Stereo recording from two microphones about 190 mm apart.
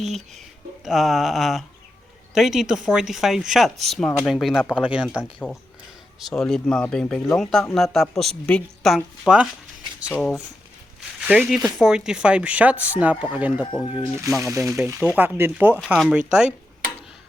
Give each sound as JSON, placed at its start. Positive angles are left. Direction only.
{"t": 0.0, "sound": "speech", "side_deg": 0}
{"t": 5.1, "sound": "speech", "side_deg": 10}
{"t": 13.8, "sound": "speech", "side_deg": 30}
{"t": 14.4, "sound": "speech", "side_deg": -15}